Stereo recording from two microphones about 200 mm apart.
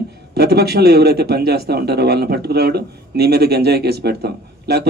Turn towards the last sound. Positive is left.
turn(degrees=-50)  # may be behind; listen again after turning